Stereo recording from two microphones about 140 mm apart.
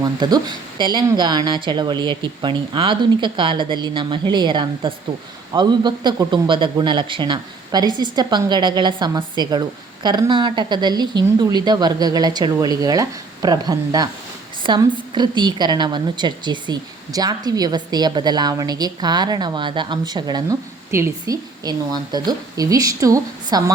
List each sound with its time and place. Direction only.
0.0 s a woman's voice: 30° right (ahead or behind)